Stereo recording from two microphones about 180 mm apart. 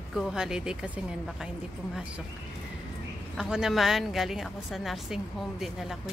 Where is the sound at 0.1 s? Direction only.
5° right (ahead or behind).